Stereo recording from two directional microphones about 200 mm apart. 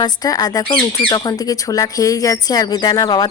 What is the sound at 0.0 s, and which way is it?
A woman's voice, 20° left (ahead or behind).